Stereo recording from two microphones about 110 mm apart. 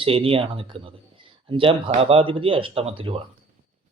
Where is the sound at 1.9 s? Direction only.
60° right (ahead or behind).